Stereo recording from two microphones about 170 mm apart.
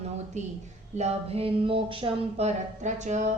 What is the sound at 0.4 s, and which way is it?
A woman's voice, 40° right (ahead or behind).